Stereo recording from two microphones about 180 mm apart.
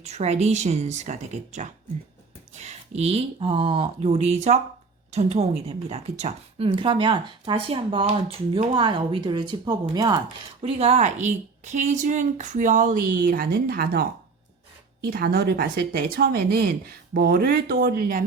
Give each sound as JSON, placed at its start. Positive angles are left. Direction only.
{"t": 0.0, "sound": "a woman's voice", "side_deg": -35}
{"t": 10.6, "sound": "a woman's voice", "side_deg": -35}